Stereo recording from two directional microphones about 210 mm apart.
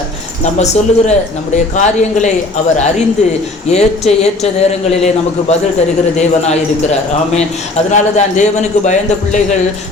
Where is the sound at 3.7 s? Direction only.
30° left (ahead or behind).